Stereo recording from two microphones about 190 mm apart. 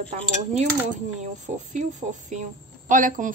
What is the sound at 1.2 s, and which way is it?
Speech, 40° right (ahead or behind).